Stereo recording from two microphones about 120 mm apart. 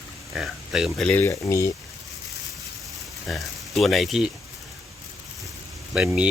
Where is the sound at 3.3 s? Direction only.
Centre (ahead or behind).